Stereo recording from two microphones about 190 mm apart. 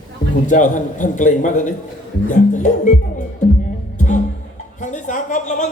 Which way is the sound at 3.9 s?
40° left (ahead or behind).